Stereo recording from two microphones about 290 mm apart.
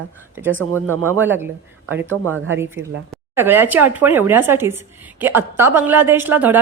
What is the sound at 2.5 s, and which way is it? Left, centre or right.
Speech, centre.